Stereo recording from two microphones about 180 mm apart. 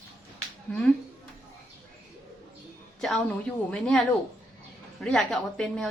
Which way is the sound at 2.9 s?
Centre (ahead or behind).